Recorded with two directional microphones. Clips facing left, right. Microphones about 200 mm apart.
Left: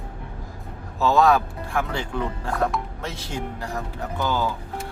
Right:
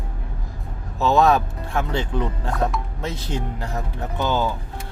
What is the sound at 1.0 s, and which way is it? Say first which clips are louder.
Speech: right 1 dB; 20° right (ahead or behind).